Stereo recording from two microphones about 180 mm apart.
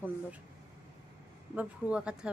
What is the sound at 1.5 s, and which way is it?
Speech, 5° right (ahead or behind).